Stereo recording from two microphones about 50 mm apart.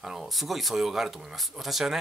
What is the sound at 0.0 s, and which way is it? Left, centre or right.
Speech, centre.